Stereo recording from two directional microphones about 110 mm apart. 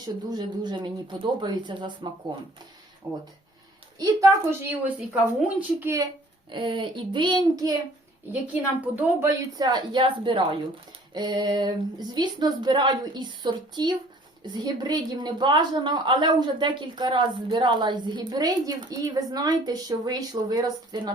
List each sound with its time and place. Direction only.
0.0 s speech: 40° right (ahead or behind)
3.1 s a woman's voice: 30° right (ahead or behind)
4.9 s a woman's voice: 10° right (ahead or behind)
5.8 s speech: 25° right (ahead or behind)
6.5 s speech: 50° right (ahead or behind)
8.3 s a woman's voice: 15° right (ahead or behind)
9.6 s a woman's voice: 40° right (ahead or behind)
10.0 s speech: 55° right (ahead or behind)
11.1 s a woman's voice: 40° right (ahead or behind)